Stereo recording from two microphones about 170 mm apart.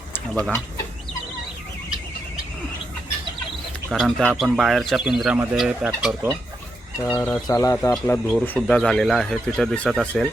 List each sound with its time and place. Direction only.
0.3 s speech: 5° left (ahead or behind)
3.8 s speech: centre (ahead or behind)
7.1 s speech: 10° left (ahead or behind)
8.5 s speech: centre (ahead or behind)